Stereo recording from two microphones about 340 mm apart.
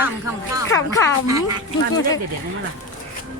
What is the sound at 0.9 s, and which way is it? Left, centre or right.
Music, centre.